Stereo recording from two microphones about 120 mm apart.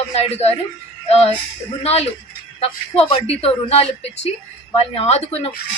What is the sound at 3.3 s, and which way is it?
Speech, 55° left (ahead or behind).